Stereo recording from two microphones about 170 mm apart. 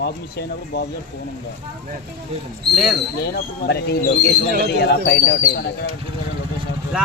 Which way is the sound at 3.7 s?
70° left (ahead or behind).